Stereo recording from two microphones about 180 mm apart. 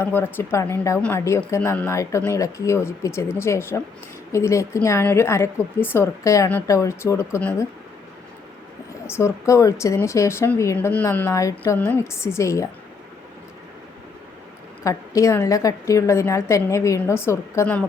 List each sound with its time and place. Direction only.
0.0 s a woman's voice: 10° left (ahead or behind)
9.0 s a woman's voice: 15° left (ahead or behind)
14.8 s a woman's voice: 15° left (ahead or behind)